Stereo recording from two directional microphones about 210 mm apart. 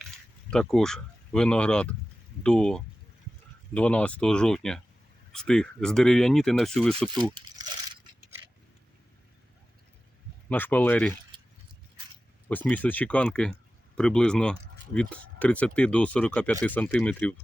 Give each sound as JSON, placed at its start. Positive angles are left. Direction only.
{"t": 0.5, "sound": "speech", "side_deg": 5}
{"t": 7.3, "sound": "a sound", "side_deg": -20}
{"t": 10.5, "sound": "speech", "side_deg": 10}
{"t": 12.5, "sound": "speech", "side_deg": 5}